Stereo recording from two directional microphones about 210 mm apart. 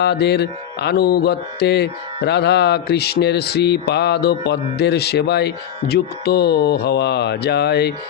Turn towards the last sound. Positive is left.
turn(degrees=50)  # may be behind; listen again after turning